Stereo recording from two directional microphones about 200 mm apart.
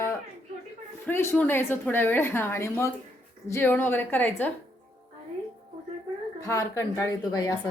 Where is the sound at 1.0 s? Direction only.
10° left (ahead or behind).